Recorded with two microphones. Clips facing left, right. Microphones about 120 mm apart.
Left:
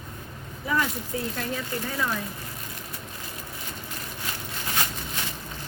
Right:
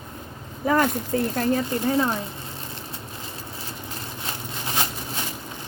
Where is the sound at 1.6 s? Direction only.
30° right (ahead or behind).